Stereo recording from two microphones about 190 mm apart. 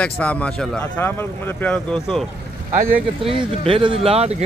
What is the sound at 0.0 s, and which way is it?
Speech, 5° left (ahead or behind).